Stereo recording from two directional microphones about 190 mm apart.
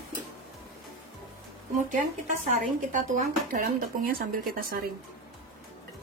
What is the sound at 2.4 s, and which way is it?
Speech, 45° right (ahead or behind).